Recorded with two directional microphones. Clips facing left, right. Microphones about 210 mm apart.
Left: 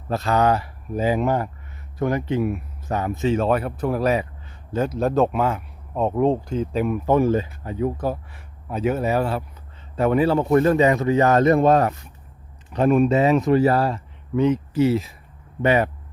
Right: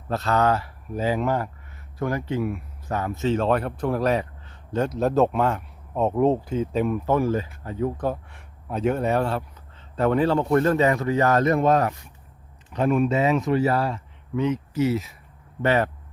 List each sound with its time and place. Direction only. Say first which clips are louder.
0.1 s a man's voice: left 2 dB; 10° left (ahead or behind)
7.0 s a man's voice: left 4 dB; 20° left (ahead or behind)
15.6 s a man's voice: left 3 dB; 15° left (ahead or behind)